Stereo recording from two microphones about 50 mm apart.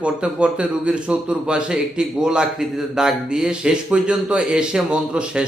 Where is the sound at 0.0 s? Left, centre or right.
Right.